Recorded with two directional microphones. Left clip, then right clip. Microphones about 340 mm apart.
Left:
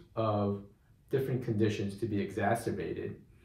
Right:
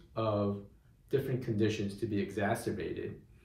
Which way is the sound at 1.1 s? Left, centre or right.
Centre.